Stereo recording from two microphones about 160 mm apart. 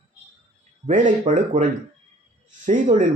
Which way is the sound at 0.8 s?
55° right (ahead or behind).